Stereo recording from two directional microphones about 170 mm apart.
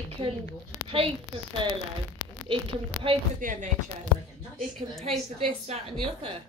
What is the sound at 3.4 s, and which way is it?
Speech, 50° right (ahead or behind).